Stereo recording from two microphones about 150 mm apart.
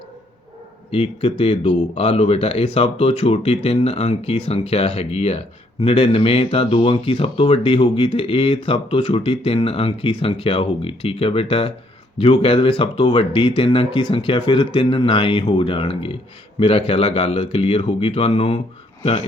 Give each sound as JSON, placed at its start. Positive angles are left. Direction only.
{"t": 0.9, "sound": "speech", "side_deg": 40}